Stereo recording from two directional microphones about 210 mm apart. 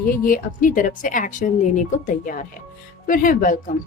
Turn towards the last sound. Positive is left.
turn(degrees=40)  # may be behind; listen again after turning